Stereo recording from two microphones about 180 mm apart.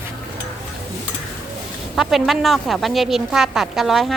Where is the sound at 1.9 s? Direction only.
Centre (ahead or behind).